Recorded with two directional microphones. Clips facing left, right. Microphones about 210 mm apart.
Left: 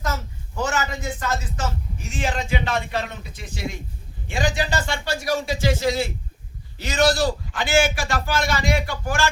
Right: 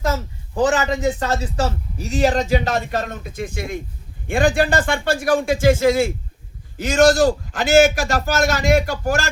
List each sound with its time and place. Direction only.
0.5 s a man's voice: 35° right (ahead or behind)